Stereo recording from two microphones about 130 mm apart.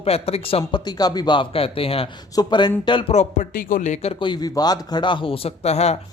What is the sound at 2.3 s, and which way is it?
Speech, 35° left (ahead or behind).